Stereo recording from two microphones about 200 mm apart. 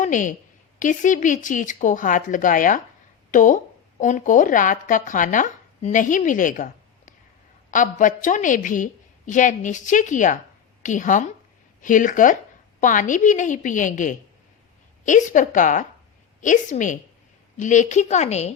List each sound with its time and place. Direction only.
0.0 s a woman's voice: 40° left (ahead or behind)